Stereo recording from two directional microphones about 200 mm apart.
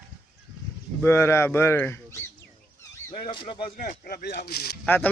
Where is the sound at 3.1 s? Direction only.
25° left (ahead or behind).